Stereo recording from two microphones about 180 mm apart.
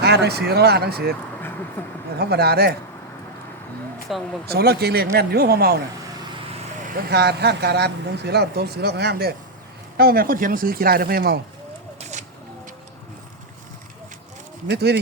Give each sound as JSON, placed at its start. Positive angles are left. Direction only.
{"t": 0.0, "sound": "speech", "side_deg": -65}
{"t": 1.8, "sound": "speech", "side_deg": 10}
{"t": 2.1, "sound": "speech", "side_deg": -60}
{"t": 4.1, "sound": "speech", "side_deg": 0}
{"t": 4.4, "sound": "speech", "side_deg": -60}
{"t": 6.8, "sound": "speech", "side_deg": -55}
{"t": 11.9, "sound": "a sound", "side_deg": -40}
{"t": 14.7, "sound": "speech", "side_deg": -65}